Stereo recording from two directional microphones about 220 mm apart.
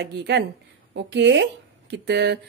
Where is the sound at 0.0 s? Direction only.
50° right (ahead or behind).